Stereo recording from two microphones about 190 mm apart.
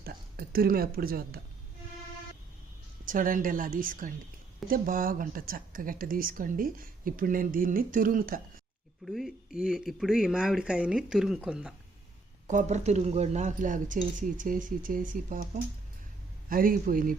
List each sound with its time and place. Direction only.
0.0 s speech: 50° right (ahead or behind)
3.1 s speech: 45° right (ahead or behind)
9.0 s speech: centre (ahead or behind)
12.5 s speech: 40° right (ahead or behind)
16.5 s speech: 50° right (ahead or behind)